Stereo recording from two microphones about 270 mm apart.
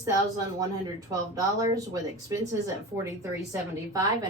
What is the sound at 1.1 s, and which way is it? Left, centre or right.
A woman's voice, centre.